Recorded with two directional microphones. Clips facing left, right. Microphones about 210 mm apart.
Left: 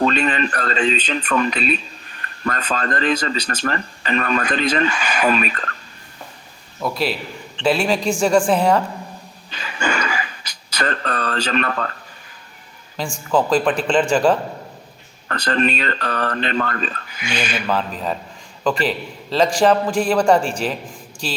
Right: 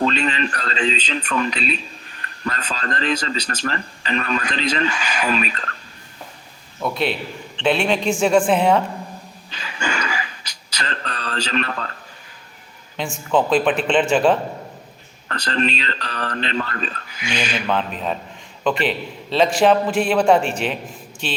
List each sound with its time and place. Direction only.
0.0 s speech: 50° left (ahead or behind)
6.7 s a man's voice: centre (ahead or behind)
9.5 s a sound: 50° left (ahead or behind)
13.0 s a man's voice: centre (ahead or behind)
15.3 s speech: 55° left (ahead or behind)
17.7 s a man's voice: centre (ahead or behind)